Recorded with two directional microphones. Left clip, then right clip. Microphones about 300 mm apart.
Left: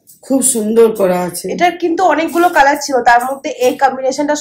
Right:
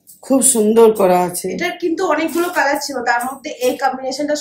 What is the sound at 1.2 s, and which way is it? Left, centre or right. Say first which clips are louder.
A woman's voice: left 3 dB; centre.